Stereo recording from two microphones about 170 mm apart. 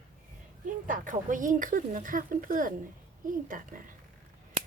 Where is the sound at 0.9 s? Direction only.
50° right (ahead or behind).